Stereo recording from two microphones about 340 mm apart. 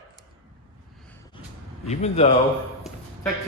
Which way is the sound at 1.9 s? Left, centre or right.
Centre.